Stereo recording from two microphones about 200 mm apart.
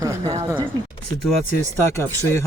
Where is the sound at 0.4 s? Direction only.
25° right (ahead or behind).